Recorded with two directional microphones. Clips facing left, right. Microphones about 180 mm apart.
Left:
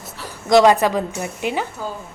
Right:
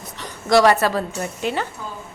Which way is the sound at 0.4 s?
20° left (ahead or behind).